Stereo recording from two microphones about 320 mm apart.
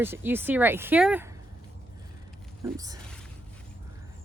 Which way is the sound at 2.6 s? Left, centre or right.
Centre.